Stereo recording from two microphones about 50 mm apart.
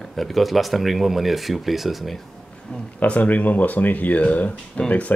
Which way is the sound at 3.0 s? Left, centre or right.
Left.